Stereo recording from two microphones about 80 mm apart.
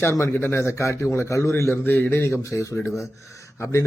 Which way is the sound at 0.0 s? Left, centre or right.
Left.